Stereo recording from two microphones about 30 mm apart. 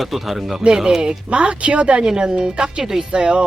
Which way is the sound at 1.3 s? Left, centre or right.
Right.